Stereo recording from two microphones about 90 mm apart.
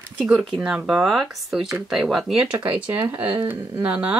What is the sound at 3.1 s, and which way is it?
Speech, 20° right (ahead or behind).